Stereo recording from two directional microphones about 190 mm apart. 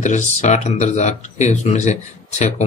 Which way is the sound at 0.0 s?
40° left (ahead or behind).